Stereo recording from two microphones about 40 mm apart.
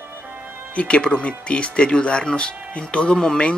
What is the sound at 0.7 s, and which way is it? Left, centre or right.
Speech, left.